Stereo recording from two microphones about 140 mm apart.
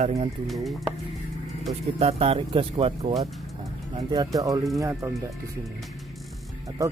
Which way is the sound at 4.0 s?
25° right (ahead or behind).